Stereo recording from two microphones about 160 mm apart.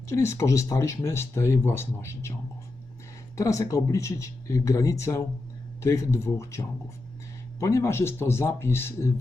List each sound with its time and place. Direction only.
0.1 s speech: 20° left (ahead or behind)
3.3 s speech: 20° left (ahead or behind)